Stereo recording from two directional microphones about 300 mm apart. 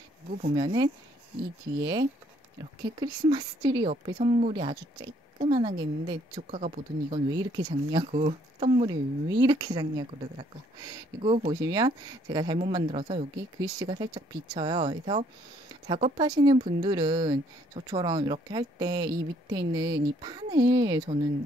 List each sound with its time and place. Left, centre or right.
0.6 s speech: centre